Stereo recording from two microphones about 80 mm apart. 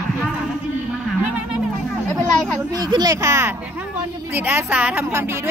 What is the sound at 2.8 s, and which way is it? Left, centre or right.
Speech, right.